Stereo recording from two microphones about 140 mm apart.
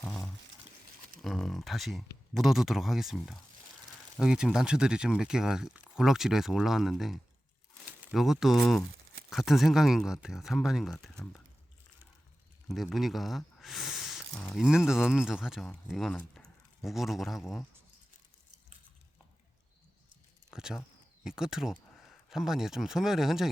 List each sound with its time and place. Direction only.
0.0 s a sound: 5° left (ahead or behind)
1.2 s speech: centre (ahead or behind)
12.6 s speech: centre (ahead or behind)
20.5 s speech: 5° right (ahead or behind)